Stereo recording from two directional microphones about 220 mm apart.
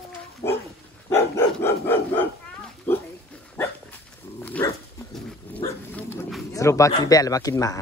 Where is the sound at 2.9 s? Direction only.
10° left (ahead or behind).